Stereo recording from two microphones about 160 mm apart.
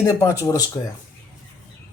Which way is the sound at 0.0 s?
20° left (ahead or behind).